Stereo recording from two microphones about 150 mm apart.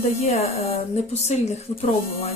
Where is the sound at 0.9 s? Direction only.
50° left (ahead or behind).